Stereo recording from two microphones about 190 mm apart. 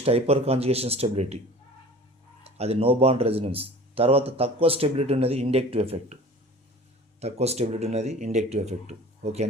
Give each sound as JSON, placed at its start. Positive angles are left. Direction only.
{"t": 0.0, "sound": "speech", "side_deg": -30}
{"t": 2.4, "sound": "speech", "side_deg": -30}
{"t": 7.2, "sound": "speech", "side_deg": -35}